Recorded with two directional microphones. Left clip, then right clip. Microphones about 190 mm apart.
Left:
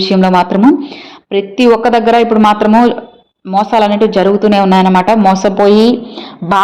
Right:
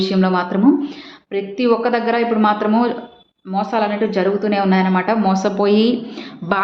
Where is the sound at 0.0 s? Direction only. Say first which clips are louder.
Left 8 dB; 40° left (ahead or behind).